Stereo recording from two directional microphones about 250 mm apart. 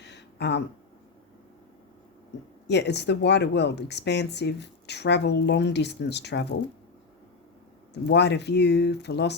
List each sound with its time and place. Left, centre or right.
0.0 s a sound: left
2.6 s speech: left
8.0 s speech: left